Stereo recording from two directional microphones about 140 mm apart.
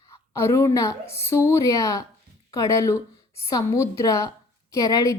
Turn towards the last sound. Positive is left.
turn(degrees=25)  # may be behind; listen again after turning